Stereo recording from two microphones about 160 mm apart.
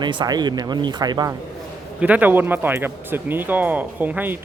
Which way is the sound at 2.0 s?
10° right (ahead or behind).